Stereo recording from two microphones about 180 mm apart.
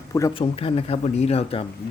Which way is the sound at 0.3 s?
30° left (ahead or behind).